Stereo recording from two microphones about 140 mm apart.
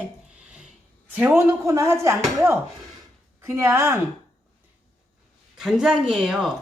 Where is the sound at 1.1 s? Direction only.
15° right (ahead or behind).